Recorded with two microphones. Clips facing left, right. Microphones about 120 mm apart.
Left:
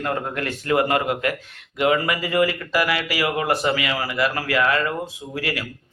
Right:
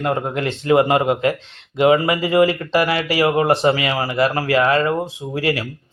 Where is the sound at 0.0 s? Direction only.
20° right (ahead or behind).